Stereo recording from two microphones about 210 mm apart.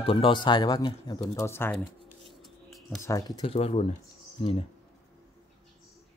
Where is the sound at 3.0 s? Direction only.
15° left (ahead or behind).